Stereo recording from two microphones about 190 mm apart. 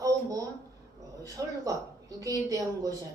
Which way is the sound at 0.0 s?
20° right (ahead or behind).